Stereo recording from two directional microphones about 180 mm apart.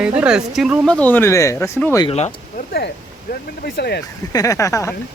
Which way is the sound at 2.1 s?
35° left (ahead or behind).